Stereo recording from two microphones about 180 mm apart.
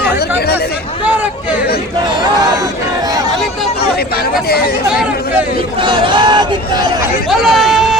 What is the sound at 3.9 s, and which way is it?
Speech, 60° left (ahead or behind).